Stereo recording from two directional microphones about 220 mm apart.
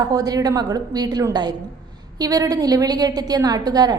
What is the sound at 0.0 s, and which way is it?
A woman's voice, 15° right (ahead or behind).